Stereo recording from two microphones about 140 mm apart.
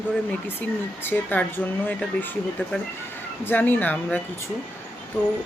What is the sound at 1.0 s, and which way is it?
Speech, 15° left (ahead or behind).